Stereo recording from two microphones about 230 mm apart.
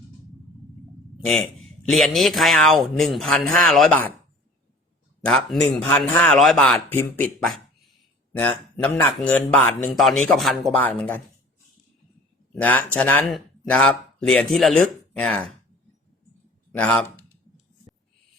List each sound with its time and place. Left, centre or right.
1.2 s a man's voice: centre
5.2 s a man's voice: centre
12.5 s a man's voice: centre
16.7 s speech: centre